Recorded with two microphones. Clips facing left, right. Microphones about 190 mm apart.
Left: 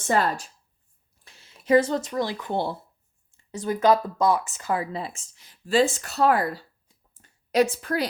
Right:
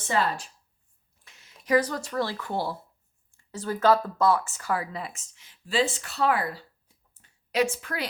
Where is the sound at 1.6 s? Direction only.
25° left (ahead or behind).